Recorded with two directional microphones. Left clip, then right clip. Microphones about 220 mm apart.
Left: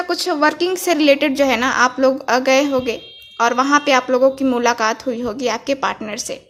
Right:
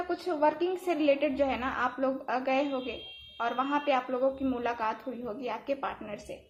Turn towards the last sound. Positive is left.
turn(degrees=45)  # may be behind; listen again after turning